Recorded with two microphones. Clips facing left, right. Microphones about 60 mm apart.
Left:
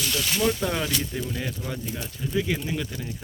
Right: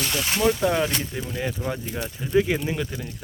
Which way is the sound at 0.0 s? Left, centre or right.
Right.